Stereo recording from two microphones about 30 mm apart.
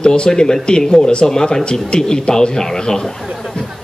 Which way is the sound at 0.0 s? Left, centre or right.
Left.